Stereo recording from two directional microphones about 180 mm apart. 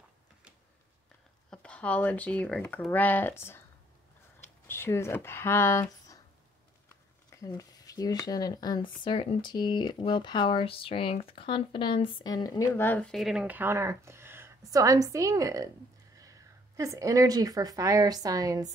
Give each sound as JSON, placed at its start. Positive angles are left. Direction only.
{"t": 1.5, "sound": "speech", "side_deg": 5}
{"t": 4.6, "sound": "speech", "side_deg": 15}
{"t": 7.2, "sound": "speech", "side_deg": 20}